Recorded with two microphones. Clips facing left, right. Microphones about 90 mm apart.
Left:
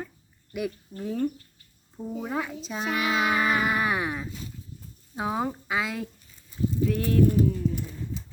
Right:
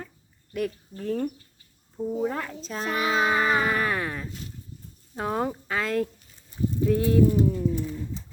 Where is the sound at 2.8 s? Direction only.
35° right (ahead or behind).